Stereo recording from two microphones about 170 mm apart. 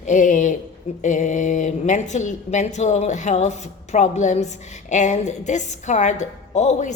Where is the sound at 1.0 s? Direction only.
45° left (ahead or behind).